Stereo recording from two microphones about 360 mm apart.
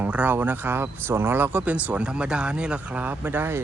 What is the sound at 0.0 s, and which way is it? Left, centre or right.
Speech, centre.